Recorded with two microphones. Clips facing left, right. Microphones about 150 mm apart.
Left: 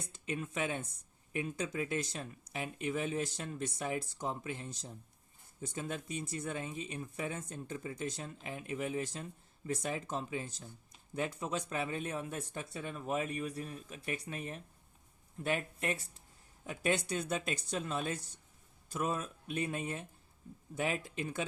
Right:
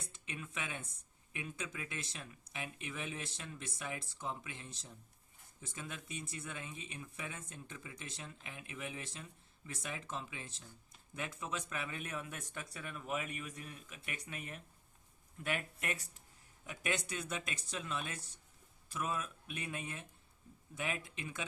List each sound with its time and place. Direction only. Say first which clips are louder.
0.3 s speech: left 9 dB; 40° left (ahead or behind)